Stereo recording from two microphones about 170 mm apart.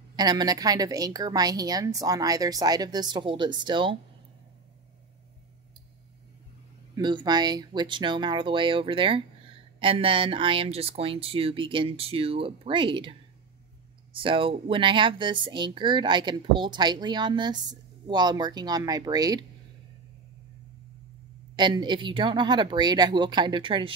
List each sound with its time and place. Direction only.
0.1 s speech: 25° right (ahead or behind)
7.0 s speech: 25° right (ahead or behind)
14.1 s speech: 30° right (ahead or behind)
21.5 s speech: 25° right (ahead or behind)